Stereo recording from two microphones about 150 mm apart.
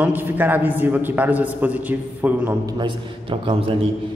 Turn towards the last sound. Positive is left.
turn(degrees=-35)  # may be behind; listen again after turning